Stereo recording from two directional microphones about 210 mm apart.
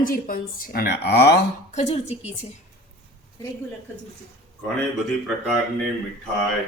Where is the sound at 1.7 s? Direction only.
30° left (ahead or behind).